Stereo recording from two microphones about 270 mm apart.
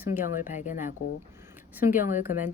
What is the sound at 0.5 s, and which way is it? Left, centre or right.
Speech, left.